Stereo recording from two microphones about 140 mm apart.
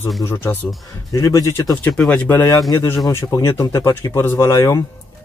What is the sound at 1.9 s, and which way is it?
Speech, 10° left (ahead or behind).